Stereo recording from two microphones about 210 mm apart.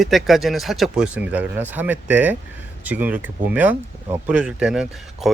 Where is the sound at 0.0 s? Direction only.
Centre (ahead or behind).